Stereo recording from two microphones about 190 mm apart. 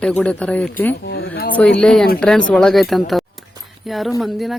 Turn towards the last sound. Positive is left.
turn(degrees=0)  # may be behind; listen again after turning